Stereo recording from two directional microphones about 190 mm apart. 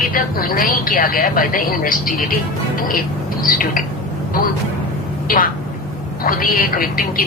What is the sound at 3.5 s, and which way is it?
Speech, 45° left (ahead or behind).